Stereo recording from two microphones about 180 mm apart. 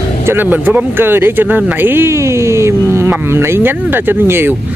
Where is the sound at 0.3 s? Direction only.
10° right (ahead or behind).